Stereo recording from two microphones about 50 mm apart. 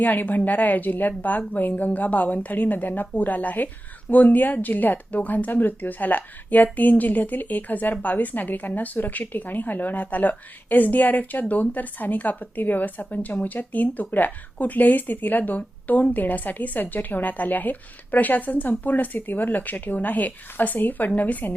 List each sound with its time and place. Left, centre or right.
0.0 s speech: left